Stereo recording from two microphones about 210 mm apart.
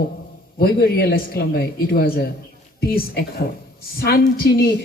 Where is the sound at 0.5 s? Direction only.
50° left (ahead or behind).